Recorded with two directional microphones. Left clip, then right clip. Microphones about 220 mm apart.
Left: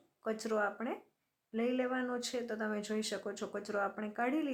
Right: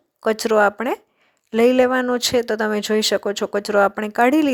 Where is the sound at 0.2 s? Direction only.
40° right (ahead or behind).